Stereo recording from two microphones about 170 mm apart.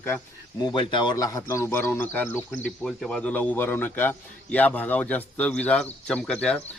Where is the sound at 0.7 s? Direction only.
25° left (ahead or behind).